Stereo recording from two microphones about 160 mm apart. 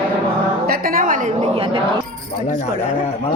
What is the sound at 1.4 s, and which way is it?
Speech, 35° right (ahead or behind).